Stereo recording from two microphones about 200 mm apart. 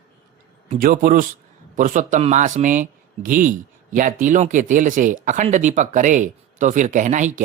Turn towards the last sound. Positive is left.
turn(degrees=-40)  # may be behind; listen again after turning